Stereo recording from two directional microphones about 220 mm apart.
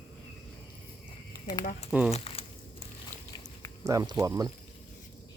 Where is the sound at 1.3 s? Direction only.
15° left (ahead or behind).